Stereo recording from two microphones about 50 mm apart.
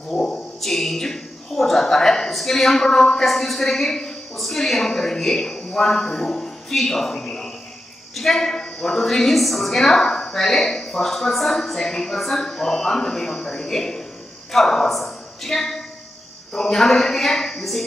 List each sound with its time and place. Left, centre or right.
0.1 s mantra: centre
0.6 s a woman's voice: centre
15.0 s a sound: centre
16.5 s a woman's voice: centre